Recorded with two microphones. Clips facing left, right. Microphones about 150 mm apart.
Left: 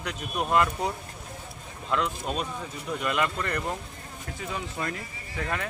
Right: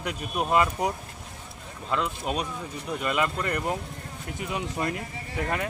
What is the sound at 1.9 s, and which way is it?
Speech, 5° right (ahead or behind).